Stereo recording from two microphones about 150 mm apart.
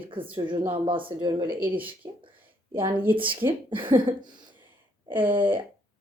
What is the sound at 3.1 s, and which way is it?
A woman's voice, 35° right (ahead or behind).